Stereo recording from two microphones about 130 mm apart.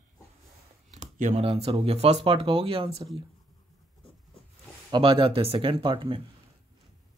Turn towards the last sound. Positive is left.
turn(degrees=-40)  # may be behind; listen again after turning